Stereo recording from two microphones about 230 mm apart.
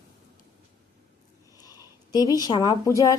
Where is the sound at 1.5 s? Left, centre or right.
Centre.